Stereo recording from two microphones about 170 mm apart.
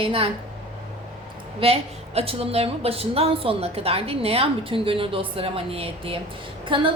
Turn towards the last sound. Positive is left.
turn(degrees=-30)  # may be behind; listen again after turning